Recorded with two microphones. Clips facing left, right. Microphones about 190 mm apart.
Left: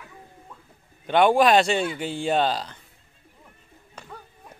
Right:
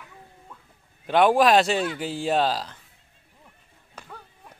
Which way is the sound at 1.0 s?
Centre (ahead or behind).